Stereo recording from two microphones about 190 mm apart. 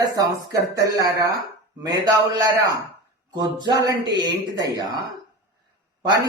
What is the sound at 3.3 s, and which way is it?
Speech, 20° right (ahead or behind).